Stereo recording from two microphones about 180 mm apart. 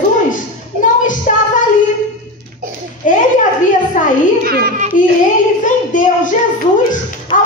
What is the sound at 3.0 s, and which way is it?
Children playing, 45° left (ahead or behind).